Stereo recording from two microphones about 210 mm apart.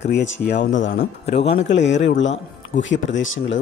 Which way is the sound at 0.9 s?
40° left (ahead or behind).